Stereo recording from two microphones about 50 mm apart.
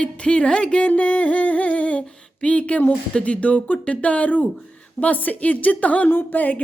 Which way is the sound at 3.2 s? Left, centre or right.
Left.